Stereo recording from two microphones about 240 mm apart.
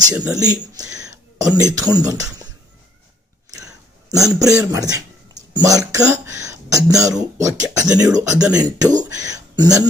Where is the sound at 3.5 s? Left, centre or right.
Centre.